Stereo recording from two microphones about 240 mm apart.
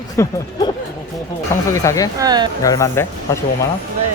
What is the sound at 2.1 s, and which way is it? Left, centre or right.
Speech, centre.